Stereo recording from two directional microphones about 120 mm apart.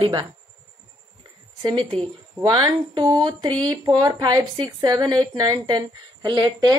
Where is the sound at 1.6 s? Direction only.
40° right (ahead or behind).